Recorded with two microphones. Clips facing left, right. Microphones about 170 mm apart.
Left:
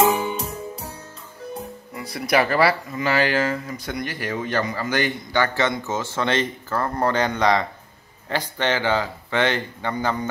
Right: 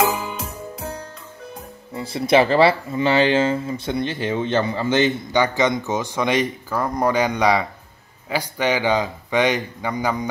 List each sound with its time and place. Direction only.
2.0 s a man's voice: 25° right (ahead or behind)